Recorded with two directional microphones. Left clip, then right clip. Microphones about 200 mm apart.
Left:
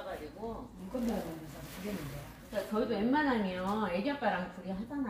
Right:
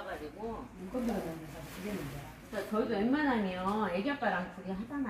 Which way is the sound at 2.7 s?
5° right (ahead or behind).